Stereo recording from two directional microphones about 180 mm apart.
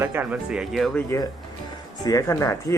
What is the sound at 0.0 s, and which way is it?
Speech, 10° right (ahead or behind).